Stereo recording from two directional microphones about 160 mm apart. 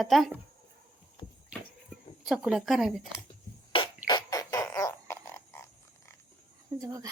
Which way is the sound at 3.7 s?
35° left (ahead or behind).